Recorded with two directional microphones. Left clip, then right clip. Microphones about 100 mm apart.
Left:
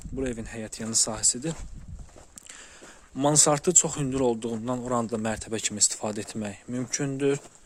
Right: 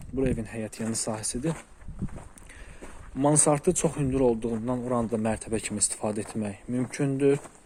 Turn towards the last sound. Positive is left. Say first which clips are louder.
# right 2 dB
turn(degrees=40)  # may be behind; listen again after turning